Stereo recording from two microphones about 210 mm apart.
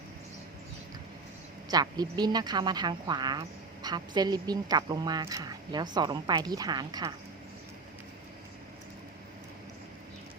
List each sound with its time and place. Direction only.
1.7 s a woman's voice: 20° right (ahead or behind)